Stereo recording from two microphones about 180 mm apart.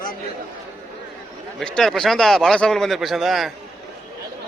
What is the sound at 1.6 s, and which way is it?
A man's voice, 5° left (ahead or behind).